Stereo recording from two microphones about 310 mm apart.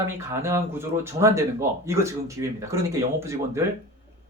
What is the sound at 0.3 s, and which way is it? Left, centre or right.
Speech, centre.